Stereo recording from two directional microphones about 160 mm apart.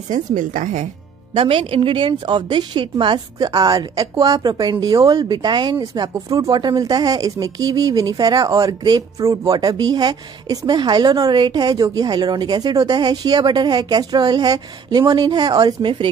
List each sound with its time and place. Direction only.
0.1 s speech: 55° right (ahead or behind)
1.3 s speech: 35° right (ahead or behind)